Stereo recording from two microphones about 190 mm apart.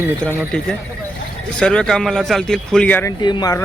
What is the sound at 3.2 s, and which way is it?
Speech, 20° left (ahead or behind).